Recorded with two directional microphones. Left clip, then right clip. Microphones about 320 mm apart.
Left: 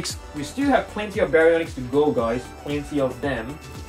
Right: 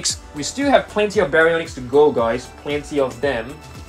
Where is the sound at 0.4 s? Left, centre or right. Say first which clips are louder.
Right 5 dB; centre.